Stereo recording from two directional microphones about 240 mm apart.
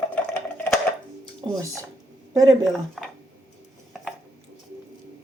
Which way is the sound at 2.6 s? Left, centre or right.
Centre.